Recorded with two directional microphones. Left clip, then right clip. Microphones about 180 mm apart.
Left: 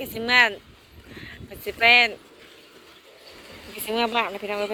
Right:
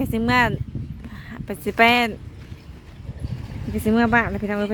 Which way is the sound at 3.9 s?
35° right (ahead or behind).